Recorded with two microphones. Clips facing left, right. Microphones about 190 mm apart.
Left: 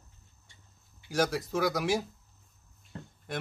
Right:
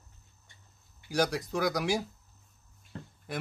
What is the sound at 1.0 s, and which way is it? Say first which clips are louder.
Speech: even; centre (ahead or behind).